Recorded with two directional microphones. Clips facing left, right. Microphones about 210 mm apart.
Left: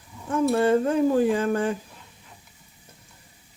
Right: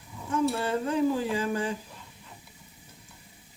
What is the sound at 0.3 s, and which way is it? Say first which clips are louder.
Speech: left 7 dB; 50° left (ahead or behind).